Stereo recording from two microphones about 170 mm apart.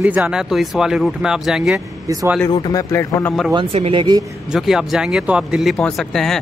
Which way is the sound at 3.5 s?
30° right (ahead or behind).